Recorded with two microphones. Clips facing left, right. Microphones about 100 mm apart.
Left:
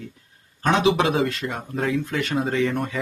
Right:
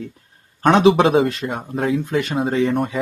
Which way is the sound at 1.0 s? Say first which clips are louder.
Right 6 dB; 30° right (ahead or behind).